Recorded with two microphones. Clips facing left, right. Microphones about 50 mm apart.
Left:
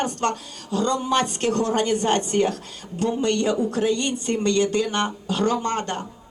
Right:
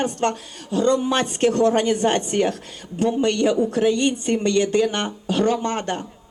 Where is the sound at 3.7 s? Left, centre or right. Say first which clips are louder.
Right 3 dB; right.